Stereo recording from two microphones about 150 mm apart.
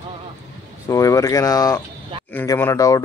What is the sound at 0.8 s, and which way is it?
Speech, 20° left (ahead or behind).